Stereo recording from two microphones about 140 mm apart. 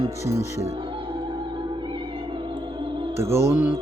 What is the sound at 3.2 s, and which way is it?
Speech, 20° right (ahead or behind).